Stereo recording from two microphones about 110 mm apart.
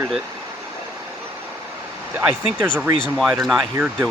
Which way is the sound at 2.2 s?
15° right (ahead or behind).